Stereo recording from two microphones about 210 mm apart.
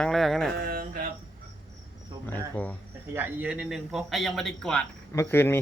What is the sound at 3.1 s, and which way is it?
Speech, 10° right (ahead or behind).